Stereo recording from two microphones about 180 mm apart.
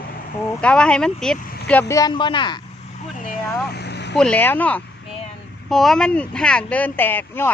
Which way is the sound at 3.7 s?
65° left (ahead or behind).